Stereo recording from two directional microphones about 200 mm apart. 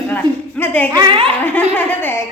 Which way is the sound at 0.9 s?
25° right (ahead or behind).